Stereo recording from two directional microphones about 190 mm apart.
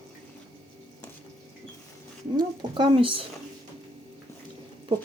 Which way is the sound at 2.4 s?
25° right (ahead or behind).